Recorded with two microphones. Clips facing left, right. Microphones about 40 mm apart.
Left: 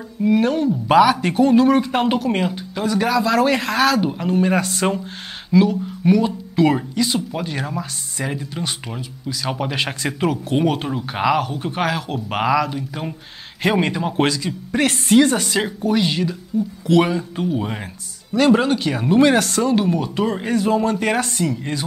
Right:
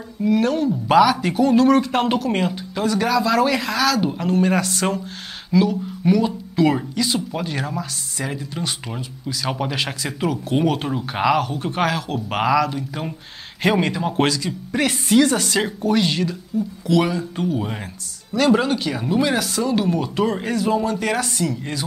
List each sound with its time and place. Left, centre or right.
0.2 s speech: centre
3.4 s speech: left
4.0 s speech: centre
15.0 s speech: centre
15.4 s speech: centre; by 19.3 s left
19.6 s speech: centre
20.5 s speech: left
21.0 s speech: centre